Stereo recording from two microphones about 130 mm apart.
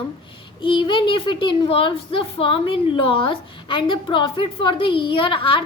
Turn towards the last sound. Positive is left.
turn(degrees=40)  # may be behind; listen again after turning